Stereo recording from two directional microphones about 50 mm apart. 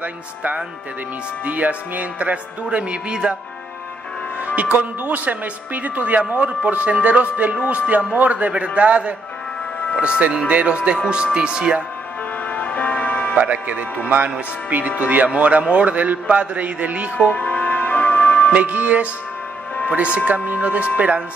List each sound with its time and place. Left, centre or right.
0.0 s speech: right
4.6 s speech: right; by 11.8 s centre
12.4 s music: left
13.4 s speech: right
17.4 s music: left
18.5 s speech: right